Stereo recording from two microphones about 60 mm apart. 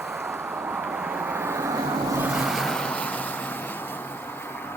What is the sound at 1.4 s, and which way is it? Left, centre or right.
Vehicle, right.